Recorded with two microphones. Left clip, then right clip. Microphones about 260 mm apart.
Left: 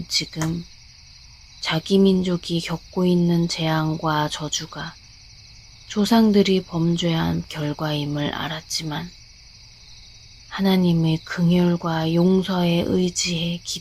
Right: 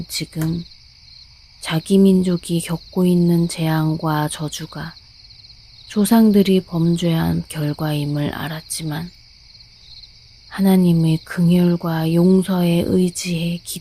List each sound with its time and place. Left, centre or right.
0.1 s speech: right
1.6 s speech: right
10.5 s speech: right